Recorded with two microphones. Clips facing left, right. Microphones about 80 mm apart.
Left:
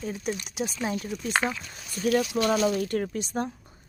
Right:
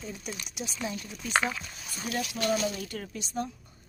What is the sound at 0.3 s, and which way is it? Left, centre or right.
Speech, left.